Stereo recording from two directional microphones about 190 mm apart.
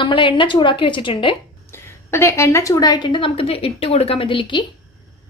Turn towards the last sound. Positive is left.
turn(degrees=25)  # may be behind; listen again after turning